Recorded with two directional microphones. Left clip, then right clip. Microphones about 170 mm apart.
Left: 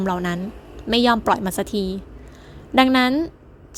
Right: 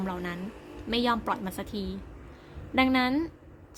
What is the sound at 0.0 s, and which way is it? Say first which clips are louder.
A woman's voice: left 11 dB; 40° left (ahead or behind).